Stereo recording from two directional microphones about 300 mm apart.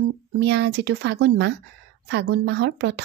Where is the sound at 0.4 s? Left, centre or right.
Right.